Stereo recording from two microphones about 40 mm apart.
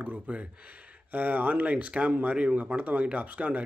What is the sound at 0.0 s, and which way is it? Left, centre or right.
A man's voice, right.